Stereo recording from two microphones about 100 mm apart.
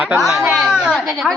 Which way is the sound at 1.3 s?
10° left (ahead or behind).